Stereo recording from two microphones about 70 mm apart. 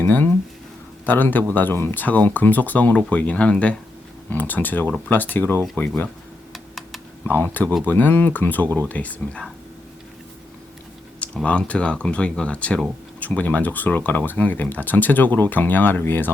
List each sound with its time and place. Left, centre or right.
0.0 s speech: left
6.5 s computer keyboard: centre
7.3 s speech: left
11.4 s speech: centre